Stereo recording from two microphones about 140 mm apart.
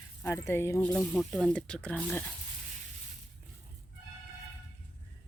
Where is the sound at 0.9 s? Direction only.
5° left (ahead or behind).